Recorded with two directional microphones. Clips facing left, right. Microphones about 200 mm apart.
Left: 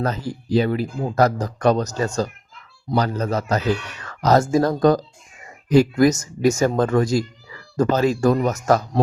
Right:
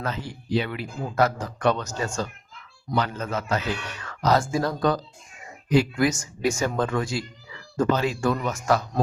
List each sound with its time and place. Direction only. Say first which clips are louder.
0.0 s speech: left 7 dB; 40° left (ahead or behind)